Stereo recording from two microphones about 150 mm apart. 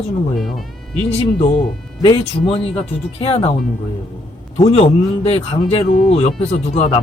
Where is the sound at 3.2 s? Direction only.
40° left (ahead or behind).